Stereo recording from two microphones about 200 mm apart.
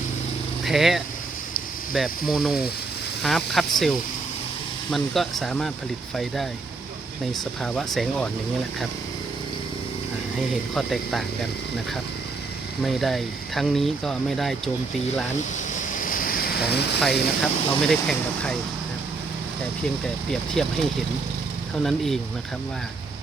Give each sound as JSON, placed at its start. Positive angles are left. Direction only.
{"t": 0.6, "sound": "speech", "side_deg": 0}
{"t": 7.6, "sound": "speech", "side_deg": 0}
{"t": 10.8, "sound": "speech", "side_deg": 0}
{"t": 12.8, "sound": "speech", "side_deg": 0}
{"t": 15.5, "sound": "vehicle", "side_deg": 40}
{"t": 17.0, "sound": "speech", "side_deg": 0}
{"t": 20.3, "sound": "speech", "side_deg": 0}
{"t": 21.8, "sound": "speech", "side_deg": 0}